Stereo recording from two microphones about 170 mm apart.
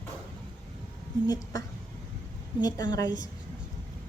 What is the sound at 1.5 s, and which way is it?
A woman's voice, 20° left (ahead or behind).